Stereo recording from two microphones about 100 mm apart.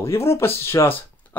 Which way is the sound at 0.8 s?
40° left (ahead or behind).